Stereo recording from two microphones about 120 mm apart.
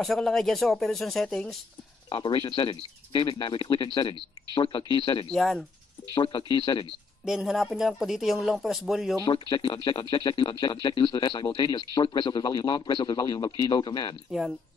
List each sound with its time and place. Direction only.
0.0 s speech: centre (ahead or behind)
2.0 s speech: 45° left (ahead or behind)
5.3 s speech: 5° left (ahead or behind)
6.1 s speech: 45° left (ahead or behind)
7.2 s speech: 5° right (ahead or behind)
9.2 s speech: 45° left (ahead or behind)